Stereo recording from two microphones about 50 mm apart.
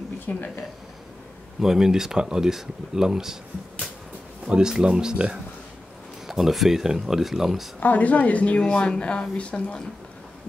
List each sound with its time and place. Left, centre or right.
1.6 s speech: centre
4.5 s speech: centre
6.2 s speech: centre
7.8 s speech: left